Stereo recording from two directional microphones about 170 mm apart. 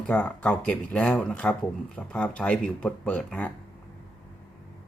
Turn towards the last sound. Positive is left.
turn(degrees=10)  # may be behind; listen again after turning